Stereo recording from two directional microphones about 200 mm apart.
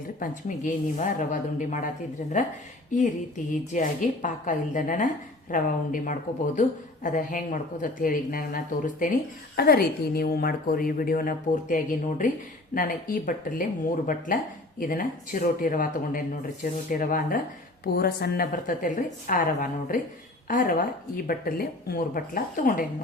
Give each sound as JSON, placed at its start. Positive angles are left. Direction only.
{"t": 0.2, "sound": "a woman's voice", "side_deg": 40}
{"t": 3.7, "sound": "a woman's voice", "side_deg": 40}